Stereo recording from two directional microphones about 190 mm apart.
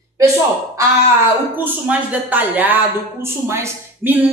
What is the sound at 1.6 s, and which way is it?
Speech, 10° right (ahead or behind).